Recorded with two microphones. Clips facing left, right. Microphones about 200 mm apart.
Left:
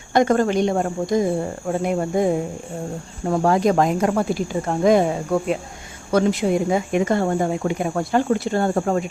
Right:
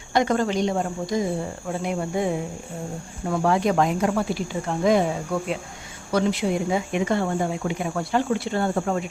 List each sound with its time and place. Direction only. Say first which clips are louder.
0.1 s speech: left 4 dB; 50° left (ahead or behind)